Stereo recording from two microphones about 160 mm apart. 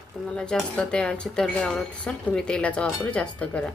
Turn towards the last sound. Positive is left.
turn(degrees=10)  # may be behind; listen again after turning